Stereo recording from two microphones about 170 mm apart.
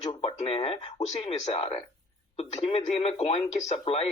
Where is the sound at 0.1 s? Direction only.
35° left (ahead or behind).